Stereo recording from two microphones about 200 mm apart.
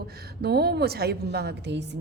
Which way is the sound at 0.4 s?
55° right (ahead or behind).